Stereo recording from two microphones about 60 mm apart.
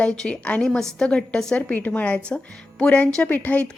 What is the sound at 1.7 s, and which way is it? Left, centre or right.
A woman's voice, left.